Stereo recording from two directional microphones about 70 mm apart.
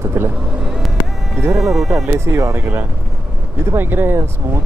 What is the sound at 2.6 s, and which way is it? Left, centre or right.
A man's voice, right.